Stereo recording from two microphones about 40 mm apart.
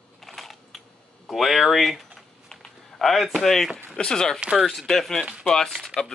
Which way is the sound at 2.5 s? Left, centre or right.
Centre.